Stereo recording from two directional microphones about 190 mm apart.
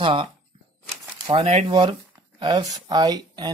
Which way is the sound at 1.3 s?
35° right (ahead or behind).